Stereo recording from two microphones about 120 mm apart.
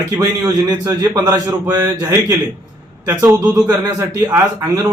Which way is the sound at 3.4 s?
30° right (ahead or behind).